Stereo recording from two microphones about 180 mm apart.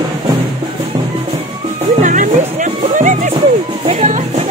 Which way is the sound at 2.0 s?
45° right (ahead or behind).